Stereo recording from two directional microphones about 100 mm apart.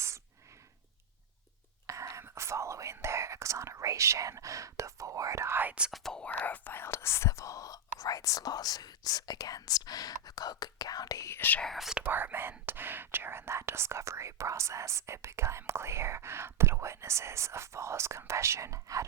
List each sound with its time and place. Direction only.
1.9 s whispering: 30° right (ahead or behind); by 5.9 s 15° right (ahead or behind)
5.9 s speech: 5° left (ahead or behind); by 11.3 s 35° left (ahead or behind)
11.3 s speech: 20° left (ahead or behind)
11.6 s speech: centre (ahead or behind)
12.0 s speech: 20° right (ahead or behind)